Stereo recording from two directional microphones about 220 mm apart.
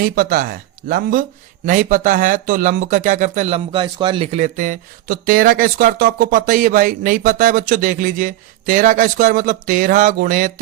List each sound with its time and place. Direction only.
0.0 s speech: 40° right (ahead or behind)